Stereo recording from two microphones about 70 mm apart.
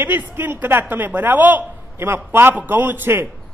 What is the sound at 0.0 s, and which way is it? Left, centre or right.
A woman's voice, right.